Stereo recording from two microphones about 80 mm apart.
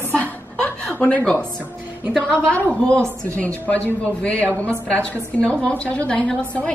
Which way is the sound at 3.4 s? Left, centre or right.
Centre.